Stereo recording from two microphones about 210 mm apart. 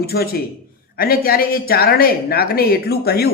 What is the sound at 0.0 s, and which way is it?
Speech, 45° left (ahead or behind).